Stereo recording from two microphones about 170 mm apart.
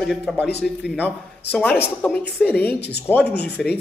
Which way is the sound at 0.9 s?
10° left (ahead or behind).